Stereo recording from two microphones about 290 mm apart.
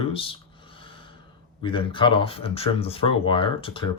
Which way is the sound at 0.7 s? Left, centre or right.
Centre.